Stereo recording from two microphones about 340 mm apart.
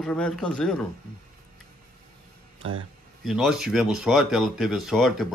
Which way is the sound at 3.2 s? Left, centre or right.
Centre.